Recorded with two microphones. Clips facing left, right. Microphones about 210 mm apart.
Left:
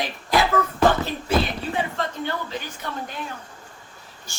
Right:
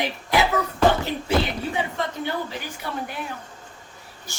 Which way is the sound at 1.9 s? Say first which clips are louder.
Right 1 dB; 15° right (ahead or behind).